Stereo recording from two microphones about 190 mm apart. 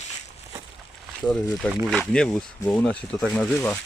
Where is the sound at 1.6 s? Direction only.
5° left (ahead or behind).